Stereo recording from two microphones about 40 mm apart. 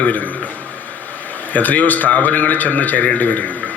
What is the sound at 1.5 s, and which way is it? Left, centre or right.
A man's voice, left.